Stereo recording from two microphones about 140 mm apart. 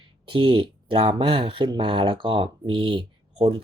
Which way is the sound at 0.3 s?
35° right (ahead or behind).